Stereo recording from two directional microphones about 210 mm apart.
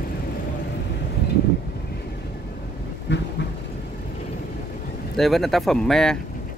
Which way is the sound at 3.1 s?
55° left (ahead or behind).